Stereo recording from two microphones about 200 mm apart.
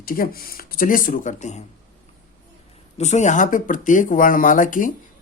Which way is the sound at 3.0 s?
35° left (ahead or behind).